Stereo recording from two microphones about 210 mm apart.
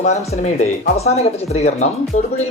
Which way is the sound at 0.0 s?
35° left (ahead or behind).